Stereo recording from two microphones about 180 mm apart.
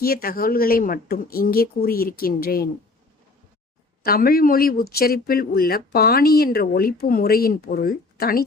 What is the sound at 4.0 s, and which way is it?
Speech, 55° left (ahead or behind).